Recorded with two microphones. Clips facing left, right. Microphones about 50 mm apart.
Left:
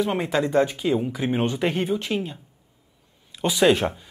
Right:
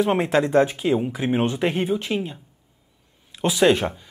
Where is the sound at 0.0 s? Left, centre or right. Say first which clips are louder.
Right 3 dB; right; by 3.8 s centre.